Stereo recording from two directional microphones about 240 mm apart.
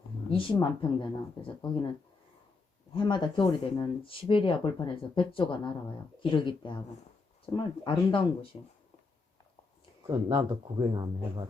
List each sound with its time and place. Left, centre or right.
0.3 s speech: left
2.9 s speech: centre
10.1 s speech: centre